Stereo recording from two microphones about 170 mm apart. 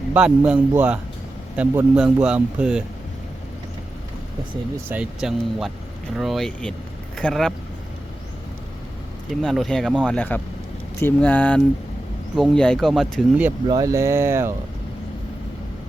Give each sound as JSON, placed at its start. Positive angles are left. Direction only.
{"t": 0.1, "sound": "speech", "side_deg": -5}
{"t": 4.9, "sound": "speech", "side_deg": -5}
{"t": 9.3, "sound": "speech", "side_deg": 0}
{"t": 13.7, "sound": "speech", "side_deg": -20}